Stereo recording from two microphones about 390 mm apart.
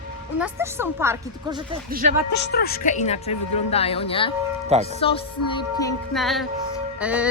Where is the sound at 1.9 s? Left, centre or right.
Right.